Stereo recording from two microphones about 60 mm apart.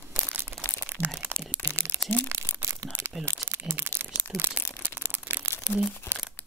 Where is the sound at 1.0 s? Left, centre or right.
Right.